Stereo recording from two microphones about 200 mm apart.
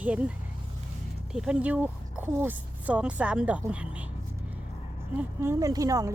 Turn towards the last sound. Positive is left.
turn(degrees=-15)  # may be behind; listen again after turning